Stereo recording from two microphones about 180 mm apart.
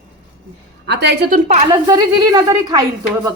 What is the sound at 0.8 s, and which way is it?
Speech, 75° right (ahead or behind).